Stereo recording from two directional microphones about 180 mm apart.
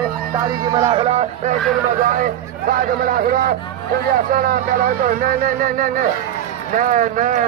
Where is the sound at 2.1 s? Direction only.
50° right (ahead or behind).